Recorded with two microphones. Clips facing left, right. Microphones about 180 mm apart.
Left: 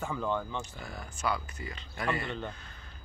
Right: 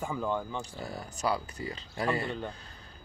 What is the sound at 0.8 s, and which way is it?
Speech, 35° right (ahead or behind).